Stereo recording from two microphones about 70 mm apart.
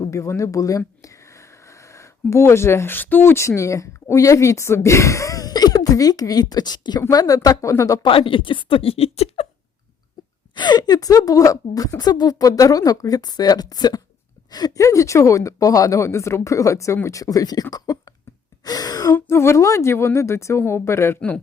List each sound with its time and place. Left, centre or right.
0.1 s speech: left
7.1 s a woman's voice: left
10.5 s a woman's voice: left
14.8 s a woman's voice: left
19.1 s speech: left